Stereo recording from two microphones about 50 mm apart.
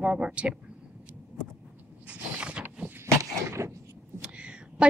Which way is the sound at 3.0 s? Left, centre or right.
Right.